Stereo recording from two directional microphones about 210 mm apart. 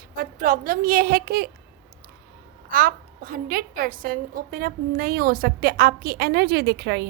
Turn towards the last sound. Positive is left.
turn(degrees=-50)  # may be behind; listen again after turning